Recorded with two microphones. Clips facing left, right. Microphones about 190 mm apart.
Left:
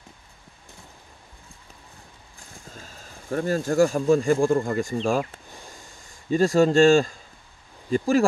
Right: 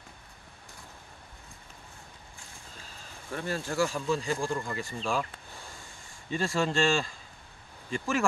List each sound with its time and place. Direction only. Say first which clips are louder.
2.7 s speech: left 5 dB; 45° left (ahead or behind)